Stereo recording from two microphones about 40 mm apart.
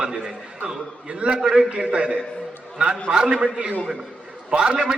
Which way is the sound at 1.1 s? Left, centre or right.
Right.